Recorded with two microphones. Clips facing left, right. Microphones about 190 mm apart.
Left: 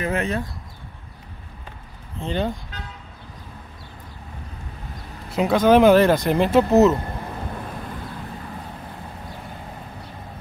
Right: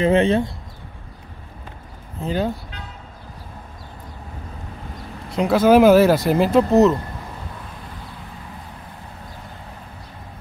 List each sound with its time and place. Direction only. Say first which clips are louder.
0.0 s speech: right 8 dB; 25° right (ahead or behind)
2.1 s speech: right 2 dB; 5° right (ahead or behind)
5.3 s speech: right 2 dB; centre (ahead or behind)